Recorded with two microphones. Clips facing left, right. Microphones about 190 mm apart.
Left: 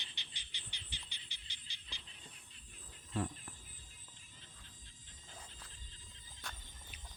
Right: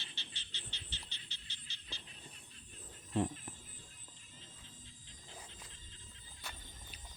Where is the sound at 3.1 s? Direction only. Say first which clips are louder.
Right 4 dB; 25° right (ahead or behind).